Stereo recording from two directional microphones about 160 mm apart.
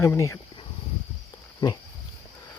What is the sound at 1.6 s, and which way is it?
Speech, 30° left (ahead or behind).